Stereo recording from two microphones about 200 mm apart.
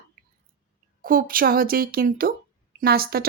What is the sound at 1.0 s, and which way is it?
Speech, 45° right (ahead or behind).